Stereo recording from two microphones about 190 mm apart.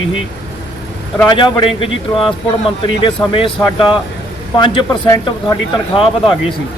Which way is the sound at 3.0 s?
30° left (ahead or behind).